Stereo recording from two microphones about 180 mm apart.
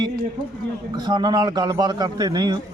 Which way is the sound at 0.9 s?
25° right (ahead or behind).